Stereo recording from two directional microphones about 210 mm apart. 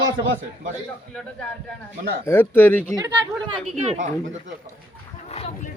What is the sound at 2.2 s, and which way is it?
Speech, 10° left (ahead or behind).